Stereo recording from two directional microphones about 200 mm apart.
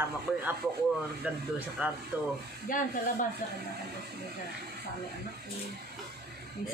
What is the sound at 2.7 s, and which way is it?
Speech, 45° left (ahead or behind).